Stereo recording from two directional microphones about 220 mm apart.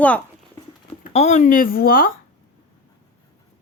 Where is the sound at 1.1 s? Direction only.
30° left (ahead or behind).